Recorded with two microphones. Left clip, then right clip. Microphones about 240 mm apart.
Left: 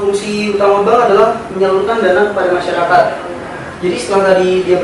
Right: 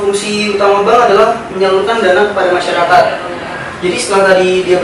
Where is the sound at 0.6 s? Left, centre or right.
Centre.